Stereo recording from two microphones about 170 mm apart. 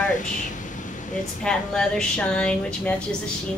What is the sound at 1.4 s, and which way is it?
A woman's voice, 5° left (ahead or behind).